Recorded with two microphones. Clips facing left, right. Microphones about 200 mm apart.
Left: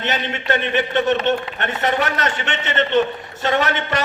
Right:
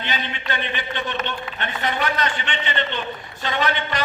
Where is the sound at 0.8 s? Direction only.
50° left (ahead or behind).